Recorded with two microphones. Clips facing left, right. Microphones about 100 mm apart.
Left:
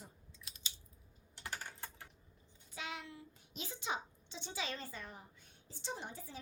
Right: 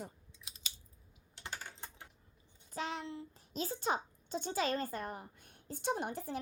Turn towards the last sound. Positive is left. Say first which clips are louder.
# right 9 dB
turn(degrees=-60)  # may be behind; listen again after turning